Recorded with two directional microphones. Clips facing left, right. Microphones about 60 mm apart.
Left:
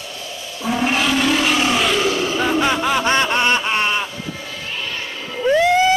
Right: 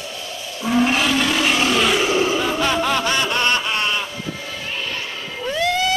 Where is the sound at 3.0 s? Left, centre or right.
Left.